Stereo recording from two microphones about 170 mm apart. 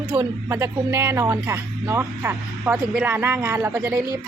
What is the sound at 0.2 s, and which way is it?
Speech, 15° right (ahead or behind).